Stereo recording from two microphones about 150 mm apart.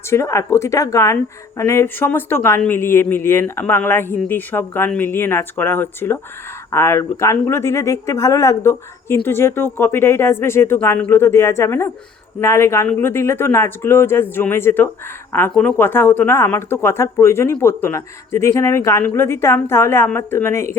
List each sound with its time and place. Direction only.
0.1 s speech: 20° left (ahead or behind)